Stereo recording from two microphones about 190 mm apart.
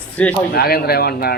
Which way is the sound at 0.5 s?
55° left (ahead or behind).